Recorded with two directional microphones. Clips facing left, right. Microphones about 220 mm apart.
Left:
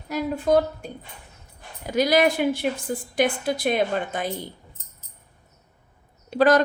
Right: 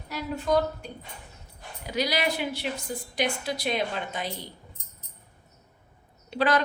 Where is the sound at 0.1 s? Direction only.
50° left (ahead or behind).